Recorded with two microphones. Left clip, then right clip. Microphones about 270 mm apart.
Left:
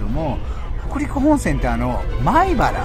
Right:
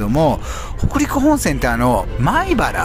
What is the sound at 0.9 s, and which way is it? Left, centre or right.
Speech, centre.